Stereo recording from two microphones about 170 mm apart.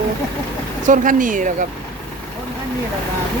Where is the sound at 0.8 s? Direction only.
50° right (ahead or behind).